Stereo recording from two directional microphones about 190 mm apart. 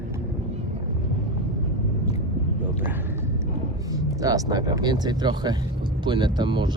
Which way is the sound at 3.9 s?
20° right (ahead or behind).